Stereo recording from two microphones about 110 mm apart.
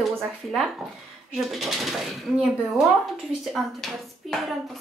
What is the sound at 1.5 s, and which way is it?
Speech, centre (ahead or behind).